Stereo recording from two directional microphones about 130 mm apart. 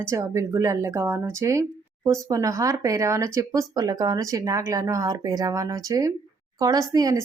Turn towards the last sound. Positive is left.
turn(degrees=-30)  # may be behind; listen again after turning